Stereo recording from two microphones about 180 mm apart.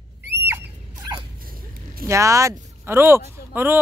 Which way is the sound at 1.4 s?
55° right (ahead or behind).